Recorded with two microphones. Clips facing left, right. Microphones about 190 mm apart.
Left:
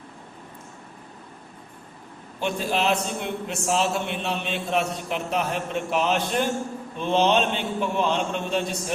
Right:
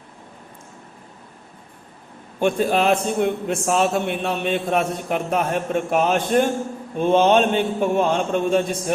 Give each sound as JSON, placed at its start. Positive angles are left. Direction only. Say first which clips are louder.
{"t": 2.4, "sound": "a man's voice", "louder": "right 6 dB", "side_deg": -50}